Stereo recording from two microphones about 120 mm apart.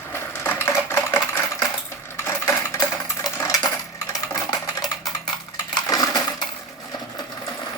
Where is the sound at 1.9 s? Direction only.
20° left (ahead or behind).